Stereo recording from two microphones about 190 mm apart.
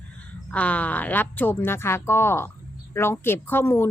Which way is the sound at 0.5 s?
5° left (ahead or behind).